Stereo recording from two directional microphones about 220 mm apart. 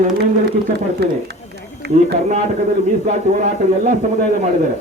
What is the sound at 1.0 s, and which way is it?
Speech, 50° right (ahead or behind).